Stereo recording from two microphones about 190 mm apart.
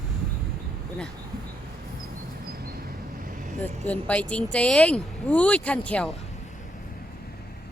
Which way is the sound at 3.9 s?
5° left (ahead or behind).